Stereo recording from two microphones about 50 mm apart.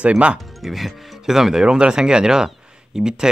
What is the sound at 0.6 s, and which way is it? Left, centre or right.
Speech, centre.